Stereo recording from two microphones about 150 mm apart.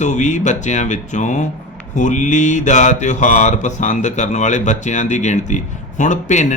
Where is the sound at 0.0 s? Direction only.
50° left (ahead or behind).